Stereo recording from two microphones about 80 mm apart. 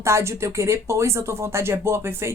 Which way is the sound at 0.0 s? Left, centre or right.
Right.